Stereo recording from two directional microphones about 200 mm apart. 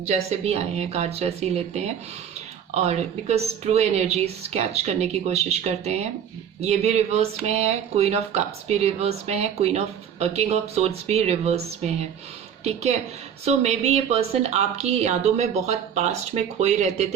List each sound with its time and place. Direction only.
0.0 s speech: 35° right (ahead or behind)
2.8 s speech: 30° right (ahead or behind)
12.6 s speech: 35° right (ahead or behind)